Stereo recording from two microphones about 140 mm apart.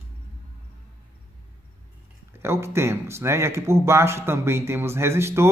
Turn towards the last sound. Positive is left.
turn(degrees=-20)  # may be behind; listen again after turning